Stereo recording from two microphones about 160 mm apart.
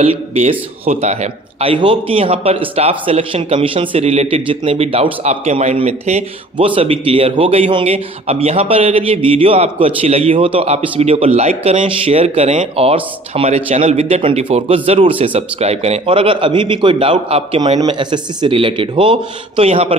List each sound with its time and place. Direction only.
0.0 s a man's voice: 40° right (ahead or behind)